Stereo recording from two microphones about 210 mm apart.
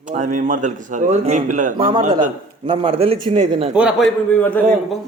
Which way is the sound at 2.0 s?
40° right (ahead or behind).